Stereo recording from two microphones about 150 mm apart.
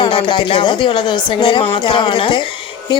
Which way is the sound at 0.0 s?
35° left (ahead or behind).